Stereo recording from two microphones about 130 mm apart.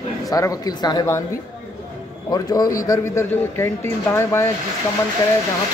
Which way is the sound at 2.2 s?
30° left (ahead or behind).